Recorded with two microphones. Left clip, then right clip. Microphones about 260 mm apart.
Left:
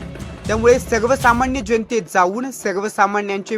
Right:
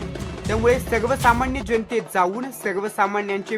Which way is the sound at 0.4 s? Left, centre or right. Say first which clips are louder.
Left 5 dB; left.